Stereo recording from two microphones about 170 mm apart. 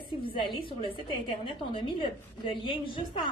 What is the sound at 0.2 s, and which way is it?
A woman's voice, 30° left (ahead or behind).